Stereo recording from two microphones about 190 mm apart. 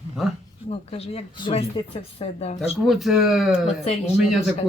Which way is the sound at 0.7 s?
30° left (ahead or behind).